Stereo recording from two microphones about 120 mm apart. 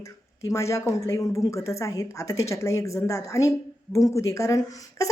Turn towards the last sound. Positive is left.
turn(degrees=30)  # may be behind; listen again after turning